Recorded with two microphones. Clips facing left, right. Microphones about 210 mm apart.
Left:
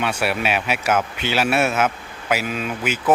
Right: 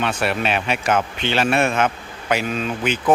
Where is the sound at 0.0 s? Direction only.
10° left (ahead or behind).